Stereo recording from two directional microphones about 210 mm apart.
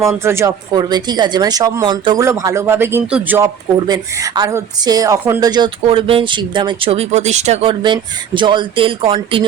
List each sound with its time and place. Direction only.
0.1 s speech: 10° right (ahead or behind)